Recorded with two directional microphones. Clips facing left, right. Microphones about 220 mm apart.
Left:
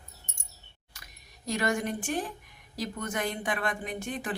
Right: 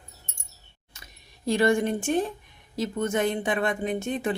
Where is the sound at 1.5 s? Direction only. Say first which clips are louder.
Right 7 dB; 30° right (ahead or behind).